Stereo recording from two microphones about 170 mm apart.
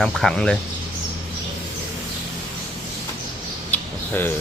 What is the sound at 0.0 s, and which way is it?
Speech, centre (ahead or behind).